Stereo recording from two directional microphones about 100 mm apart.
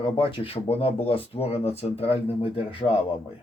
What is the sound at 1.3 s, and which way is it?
Speech, 80° left.